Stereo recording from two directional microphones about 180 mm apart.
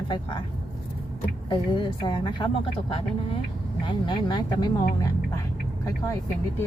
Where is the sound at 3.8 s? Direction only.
25° left (ahead or behind).